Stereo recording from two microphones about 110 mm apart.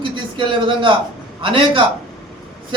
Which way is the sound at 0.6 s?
50° right (ahead or behind).